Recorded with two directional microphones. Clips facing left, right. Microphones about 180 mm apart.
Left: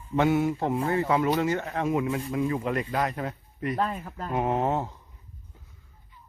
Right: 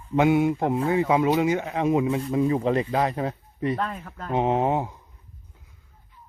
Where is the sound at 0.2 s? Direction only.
15° right (ahead or behind).